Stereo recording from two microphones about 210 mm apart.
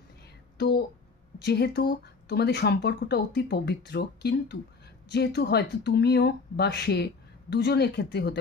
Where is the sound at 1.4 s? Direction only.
50° left (ahead or behind).